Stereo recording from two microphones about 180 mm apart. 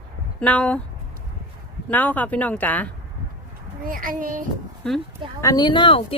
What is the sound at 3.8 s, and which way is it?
Speech, 50° right (ahead or behind).